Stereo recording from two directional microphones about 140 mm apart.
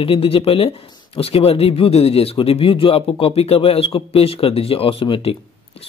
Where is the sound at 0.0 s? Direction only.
40° left (ahead or behind).